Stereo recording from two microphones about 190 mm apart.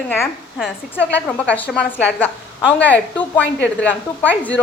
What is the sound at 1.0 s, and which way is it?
A woman's voice, 10° left (ahead or behind).